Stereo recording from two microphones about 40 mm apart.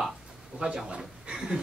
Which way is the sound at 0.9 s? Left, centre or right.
Centre.